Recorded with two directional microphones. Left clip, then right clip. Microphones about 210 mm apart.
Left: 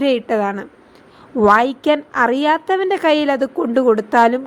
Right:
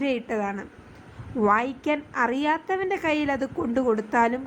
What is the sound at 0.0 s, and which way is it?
A woman's voice, 20° left (ahead or behind).